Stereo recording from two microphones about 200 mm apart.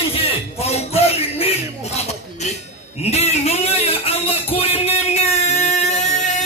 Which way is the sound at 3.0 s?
30° left (ahead or behind).